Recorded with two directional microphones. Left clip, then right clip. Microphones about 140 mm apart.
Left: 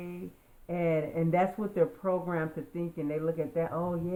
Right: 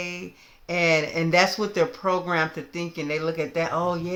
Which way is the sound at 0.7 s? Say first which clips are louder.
Right 8 dB; 25° right (ahead or behind).